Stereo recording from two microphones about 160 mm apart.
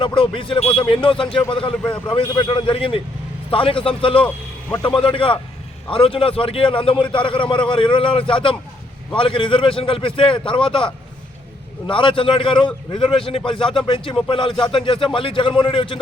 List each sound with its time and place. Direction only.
0.0 s a man's voice: 30° left (ahead or behind)